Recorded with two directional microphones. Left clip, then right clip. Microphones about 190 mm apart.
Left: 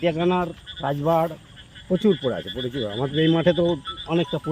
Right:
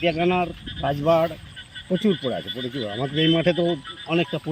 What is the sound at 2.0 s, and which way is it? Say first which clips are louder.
Speech: left 3 dB; 15° left (ahead or behind).